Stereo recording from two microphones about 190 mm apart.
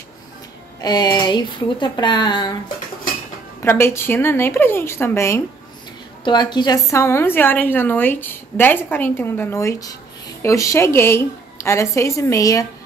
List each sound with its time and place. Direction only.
0.7 s speech: 20° left (ahead or behind)
3.6 s a woman's voice: 15° left (ahead or behind)